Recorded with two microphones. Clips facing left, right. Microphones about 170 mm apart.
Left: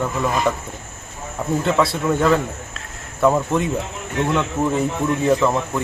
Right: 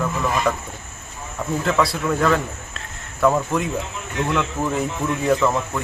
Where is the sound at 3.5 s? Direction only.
Centre (ahead or behind).